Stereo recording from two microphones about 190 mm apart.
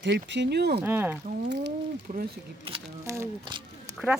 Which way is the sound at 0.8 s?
10° right (ahead or behind).